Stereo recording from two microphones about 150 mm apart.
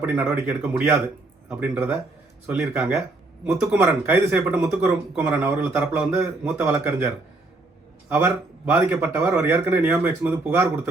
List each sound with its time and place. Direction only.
0.0 s speech: 10° right (ahead or behind)
8.7 s speech: 15° right (ahead or behind)